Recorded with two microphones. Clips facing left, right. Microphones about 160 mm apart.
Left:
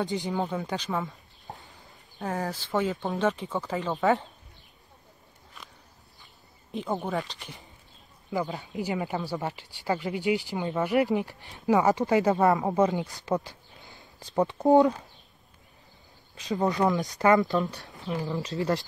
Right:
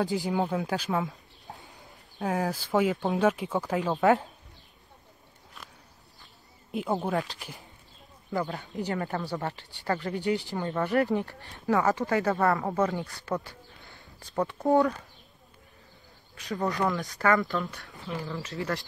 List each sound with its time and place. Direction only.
0.0 s speech: 5° right (ahead or behind)
2.1 s speech: 5° right (ahead or behind)
6.7 s speech: 10° right (ahead or behind)
9.4 s speech: 15° left (ahead or behind)
16.3 s speech: 20° left (ahead or behind)